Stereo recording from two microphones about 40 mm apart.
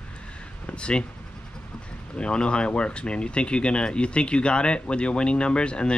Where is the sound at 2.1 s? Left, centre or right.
Left.